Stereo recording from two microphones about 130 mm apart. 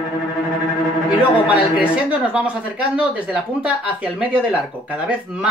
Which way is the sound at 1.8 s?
10° right (ahead or behind).